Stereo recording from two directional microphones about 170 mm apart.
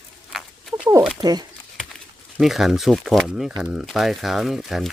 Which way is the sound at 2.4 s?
Centre (ahead or behind).